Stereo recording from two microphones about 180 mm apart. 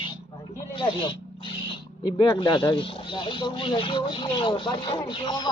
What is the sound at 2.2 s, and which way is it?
Speech, 20° left (ahead or behind).